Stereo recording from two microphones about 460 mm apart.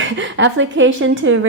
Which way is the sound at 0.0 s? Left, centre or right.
Right.